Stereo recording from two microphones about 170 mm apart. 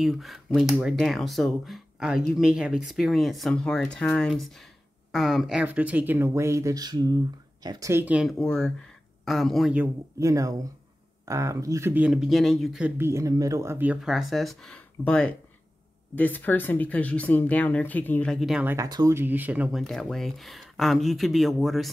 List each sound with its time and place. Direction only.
0.0 s speech: centre (ahead or behind)
10.1 s speech: 20° right (ahead or behind)
18.9 s speech: 20° right (ahead or behind); by 21.9 s centre (ahead or behind)